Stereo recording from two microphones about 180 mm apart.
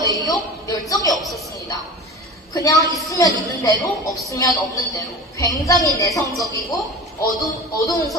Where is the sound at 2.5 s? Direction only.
20° left (ahead or behind).